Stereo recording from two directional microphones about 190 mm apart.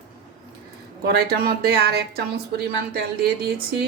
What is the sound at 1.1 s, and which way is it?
Speech, 55° right (ahead or behind).